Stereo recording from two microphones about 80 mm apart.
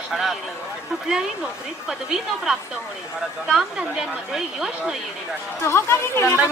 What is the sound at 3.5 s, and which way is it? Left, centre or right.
A woman's voice, centre.